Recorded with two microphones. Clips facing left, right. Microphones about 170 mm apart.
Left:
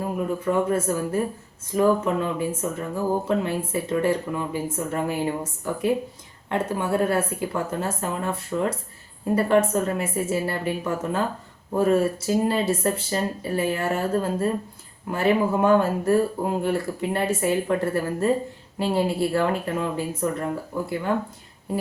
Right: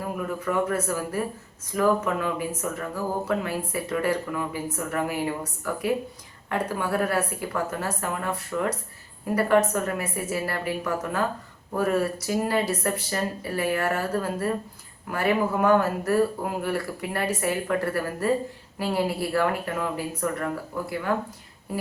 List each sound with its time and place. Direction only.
0.0 s speech: 25° left (ahead or behind)